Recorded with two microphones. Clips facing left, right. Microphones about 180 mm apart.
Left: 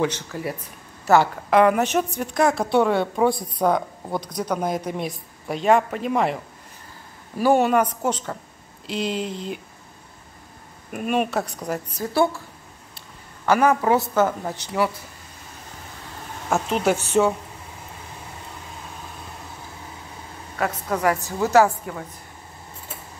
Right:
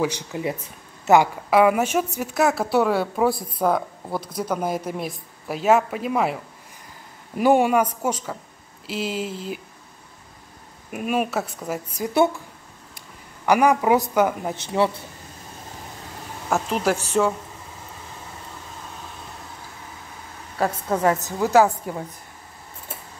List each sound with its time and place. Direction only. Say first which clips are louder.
0.0 s speech: even; 15° right (ahead or behind)
7.3 s speech: right 1 dB; 15° right (ahead or behind)
10.9 s speech: left 1 dB; 5° right (ahead or behind)
12.0 s a woman's voice: right 2 dB; 20° right (ahead or behind)
13.5 s speech: right 1 dB; 15° right (ahead or behind)
16.4 s speech: left 1 dB; centre (ahead or behind)
20.5 s a woman's voice: right 2 dB; 30° right (ahead or behind)